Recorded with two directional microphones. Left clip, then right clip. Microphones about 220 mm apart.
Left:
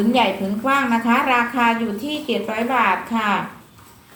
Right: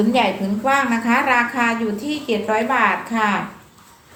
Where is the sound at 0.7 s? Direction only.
15° right (ahead or behind).